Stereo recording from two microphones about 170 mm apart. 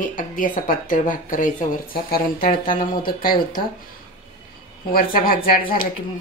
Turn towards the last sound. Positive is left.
turn(degrees=60)  # may be behind; listen again after turning